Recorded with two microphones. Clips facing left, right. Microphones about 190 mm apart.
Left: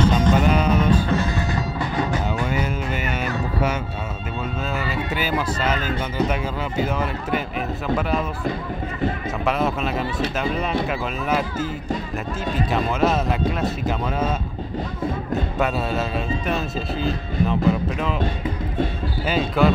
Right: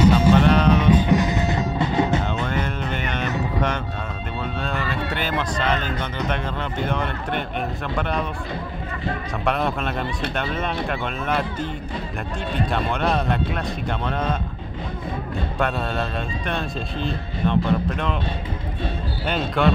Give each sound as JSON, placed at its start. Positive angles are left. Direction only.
{"t": 0.0, "sound": "music", "side_deg": -10}
{"t": 0.3, "sound": "music", "side_deg": 5}
{"t": 1.0, "sound": "music", "side_deg": -15}
{"t": 2.4, "sound": "music", "side_deg": 10}
{"t": 4.7, "sound": "music", "side_deg": 5}
{"t": 6.1, "sound": "a man's voice", "side_deg": 5}
{"t": 9.5, "sound": "a man's voice", "side_deg": 0}
{"t": 12.5, "sound": "a man's voice", "side_deg": 5}
{"t": 15.6, "sound": "a man's voice", "side_deg": 5}
{"t": 19.2, "sound": "a man's voice", "side_deg": 5}